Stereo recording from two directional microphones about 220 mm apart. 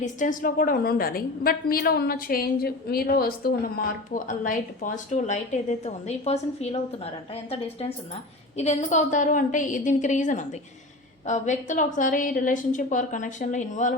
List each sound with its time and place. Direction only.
0.0 s a woman's voice: 35° left (ahead or behind)